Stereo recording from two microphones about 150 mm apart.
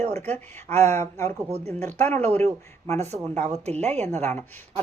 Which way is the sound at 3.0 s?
45° right (ahead or behind).